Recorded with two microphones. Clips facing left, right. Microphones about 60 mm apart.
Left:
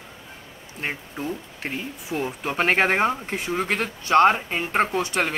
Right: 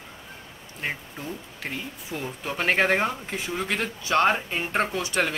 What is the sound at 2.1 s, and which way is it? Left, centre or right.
Speech, left.